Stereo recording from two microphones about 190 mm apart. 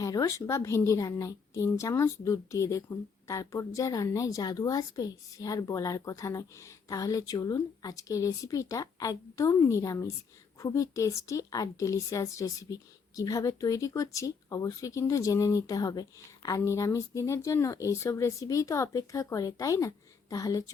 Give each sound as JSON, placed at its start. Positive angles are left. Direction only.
{"t": 0.0, "sound": "a woman's voice", "side_deg": 20}